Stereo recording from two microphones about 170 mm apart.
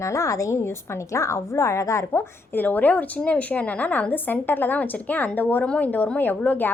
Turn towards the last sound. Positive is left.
turn(degrees=10)  # may be behind; listen again after turning